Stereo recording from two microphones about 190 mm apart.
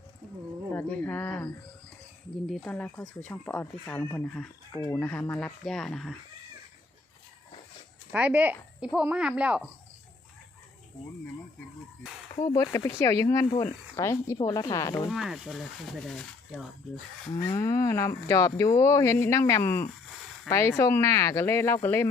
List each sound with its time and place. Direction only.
0.7 s speech: 10° left (ahead or behind)
2.5 s speech: 5° left (ahead or behind)
8.1 s speech: 10° right (ahead or behind)
12.4 s speech: 20° left (ahead or behind)
15.1 s speech: centre (ahead or behind)
17.4 s speech: 15° left (ahead or behind)